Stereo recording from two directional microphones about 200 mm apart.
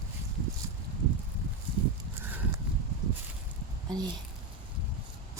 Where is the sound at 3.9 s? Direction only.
20° right (ahead or behind).